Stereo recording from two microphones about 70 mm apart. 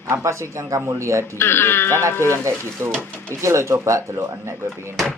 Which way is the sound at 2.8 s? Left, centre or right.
Right.